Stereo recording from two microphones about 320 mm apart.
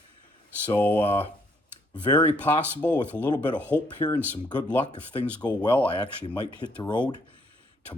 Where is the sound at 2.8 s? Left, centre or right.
Centre.